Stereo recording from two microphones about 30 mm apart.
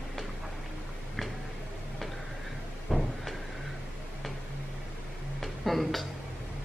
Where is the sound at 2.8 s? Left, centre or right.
Centre.